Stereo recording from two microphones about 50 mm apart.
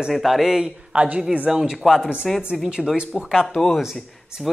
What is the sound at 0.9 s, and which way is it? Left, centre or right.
Speech, right.